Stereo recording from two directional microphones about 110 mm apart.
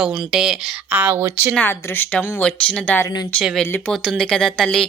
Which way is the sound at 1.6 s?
20° left (ahead or behind).